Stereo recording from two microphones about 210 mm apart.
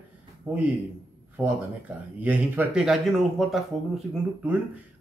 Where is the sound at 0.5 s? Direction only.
10° right (ahead or behind).